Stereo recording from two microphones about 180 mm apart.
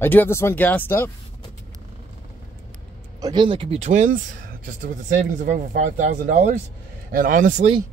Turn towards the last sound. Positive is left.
turn(degrees=-45)  # may be behind; listen again after turning